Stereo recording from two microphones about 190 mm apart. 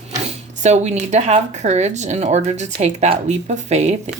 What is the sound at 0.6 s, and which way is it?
Speech, 35° right (ahead or behind).